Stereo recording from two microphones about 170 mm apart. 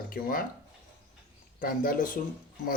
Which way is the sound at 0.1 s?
55° left (ahead or behind).